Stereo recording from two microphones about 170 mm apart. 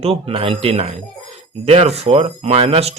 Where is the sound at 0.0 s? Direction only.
35° right (ahead or behind).